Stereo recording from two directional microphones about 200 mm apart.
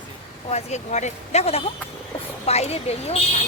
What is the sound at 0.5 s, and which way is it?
Speech, 35° left (ahead or behind).